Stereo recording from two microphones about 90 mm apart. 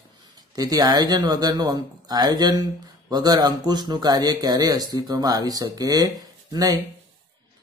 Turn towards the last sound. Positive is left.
turn(degrees=-45)  # may be behind; listen again after turning